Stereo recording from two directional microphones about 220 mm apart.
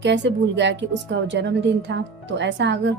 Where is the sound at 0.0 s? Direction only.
55° right (ahead or behind).